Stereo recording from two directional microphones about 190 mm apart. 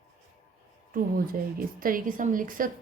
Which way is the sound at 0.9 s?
50° right (ahead or behind).